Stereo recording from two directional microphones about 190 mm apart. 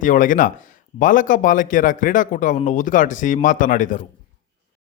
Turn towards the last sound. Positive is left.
turn(degrees=45)  # may be behind; listen again after turning